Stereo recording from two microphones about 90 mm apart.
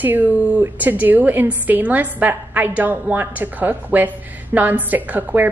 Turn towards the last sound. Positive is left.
turn(degrees=-20)  # may be behind; listen again after turning